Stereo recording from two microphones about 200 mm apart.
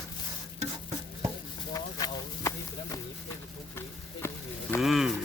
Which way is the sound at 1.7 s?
20° left (ahead or behind).